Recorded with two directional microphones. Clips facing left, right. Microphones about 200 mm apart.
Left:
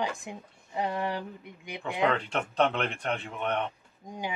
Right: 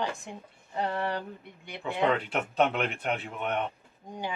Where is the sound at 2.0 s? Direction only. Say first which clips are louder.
Right 1 dB; 5° right (ahead or behind).